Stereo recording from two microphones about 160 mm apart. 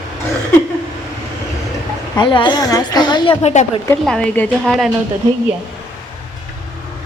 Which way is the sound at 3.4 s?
45° left (ahead or behind).